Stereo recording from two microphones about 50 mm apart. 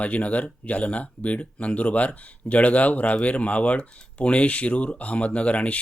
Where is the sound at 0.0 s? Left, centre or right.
Left.